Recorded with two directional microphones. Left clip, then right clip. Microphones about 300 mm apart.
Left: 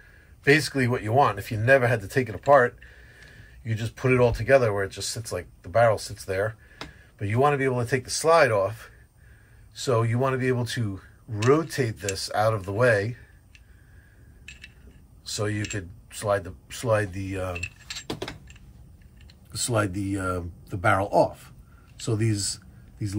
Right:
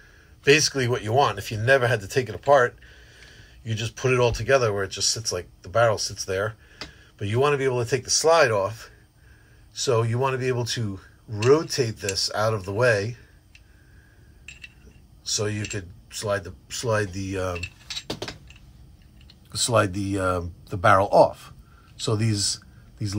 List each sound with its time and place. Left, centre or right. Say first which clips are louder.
0.4 s speech: right 2 dB; centre
9.8 s speech: right 2 dB; centre
15.3 s speech: right 1 dB; centre
19.6 s a man's voice: right 5 dB; centre